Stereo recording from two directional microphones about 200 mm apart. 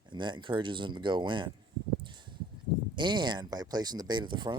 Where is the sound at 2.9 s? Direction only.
20° right (ahead or behind).